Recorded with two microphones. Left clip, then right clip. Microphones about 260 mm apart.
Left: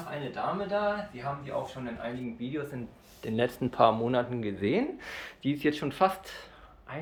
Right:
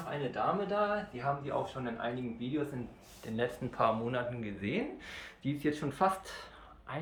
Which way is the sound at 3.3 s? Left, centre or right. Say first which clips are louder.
Left 6 dB; left.